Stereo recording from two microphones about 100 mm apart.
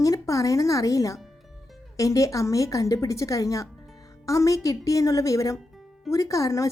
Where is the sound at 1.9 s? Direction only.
35° left (ahead or behind).